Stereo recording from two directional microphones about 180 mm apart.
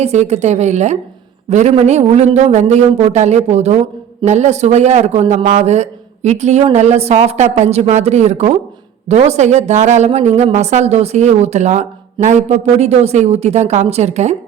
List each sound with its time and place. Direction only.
0.0 s a woman's voice: 40° right (ahead or behind)